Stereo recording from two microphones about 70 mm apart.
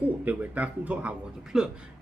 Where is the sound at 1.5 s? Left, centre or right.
Centre.